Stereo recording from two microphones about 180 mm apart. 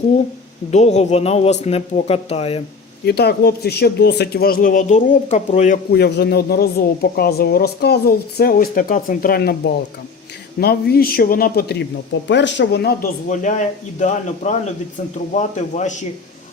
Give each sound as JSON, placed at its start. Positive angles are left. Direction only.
{"t": 0.7, "sound": "speech", "side_deg": 40}
{"t": 3.1, "sound": "a woman's voice", "side_deg": 65}
{"t": 6.0, "sound": "a woman's voice", "side_deg": 65}
{"t": 12.3, "sound": "speech", "side_deg": 80}
{"t": 13.2, "sound": "a man's voice", "side_deg": 45}